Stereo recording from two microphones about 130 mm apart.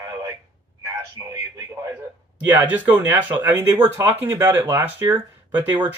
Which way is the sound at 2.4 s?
15° right (ahead or behind).